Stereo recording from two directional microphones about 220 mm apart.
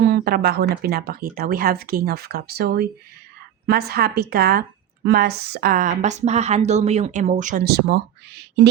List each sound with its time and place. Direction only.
0.1 s speech: 45° right (ahead or behind)